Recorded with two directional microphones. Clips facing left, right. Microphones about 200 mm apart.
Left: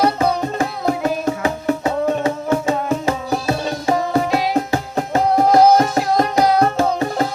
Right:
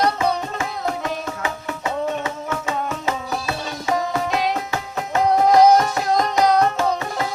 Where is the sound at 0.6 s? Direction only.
35° left (ahead or behind).